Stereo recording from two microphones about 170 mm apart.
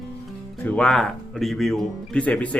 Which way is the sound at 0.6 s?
5° left (ahead or behind).